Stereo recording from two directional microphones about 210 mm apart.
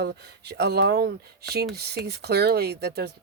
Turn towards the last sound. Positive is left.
turn(degrees=-50)  # may be behind; listen again after turning